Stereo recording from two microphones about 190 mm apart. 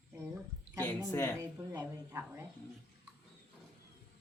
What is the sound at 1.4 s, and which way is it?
A woman's voice, 15° right (ahead or behind).